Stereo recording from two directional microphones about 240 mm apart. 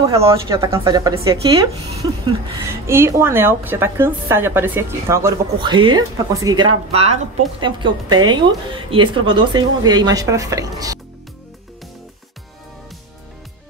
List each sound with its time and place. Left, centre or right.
0.0 s a woman's voice: centre